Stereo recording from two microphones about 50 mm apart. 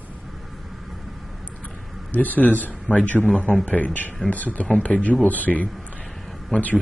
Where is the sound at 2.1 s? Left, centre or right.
Left.